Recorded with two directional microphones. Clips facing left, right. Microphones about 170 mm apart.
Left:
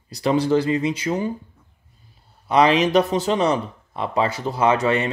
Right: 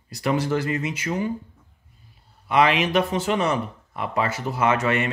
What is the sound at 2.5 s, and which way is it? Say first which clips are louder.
Speech: left 3 dB; 35° left (ahead or behind).